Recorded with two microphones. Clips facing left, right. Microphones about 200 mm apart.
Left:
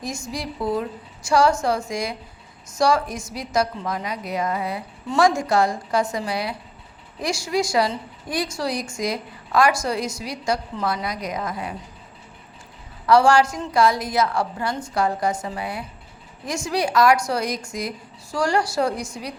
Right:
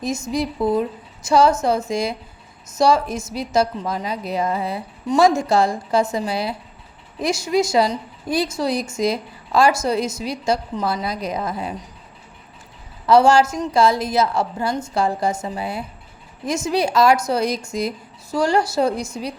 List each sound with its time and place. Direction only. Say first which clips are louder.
0.0 s a woman's voice: right 7 dB; 20° right (ahead or behind)
13.1 s a woman's voice: right 2 dB; 25° right (ahead or behind)